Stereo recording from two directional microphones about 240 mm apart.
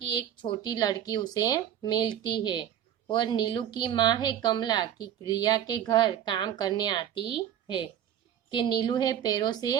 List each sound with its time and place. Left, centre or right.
0.1 s speech: centre